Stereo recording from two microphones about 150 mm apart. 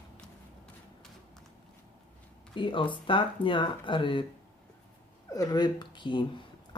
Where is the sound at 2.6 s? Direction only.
35° left (ahead or behind).